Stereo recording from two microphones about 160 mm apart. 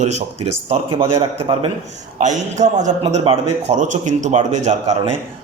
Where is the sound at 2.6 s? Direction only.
50° right (ahead or behind).